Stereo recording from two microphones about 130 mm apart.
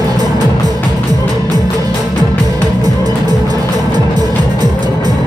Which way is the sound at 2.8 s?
30° right (ahead or behind).